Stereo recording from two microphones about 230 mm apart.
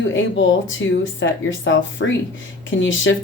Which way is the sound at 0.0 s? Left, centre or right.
Left.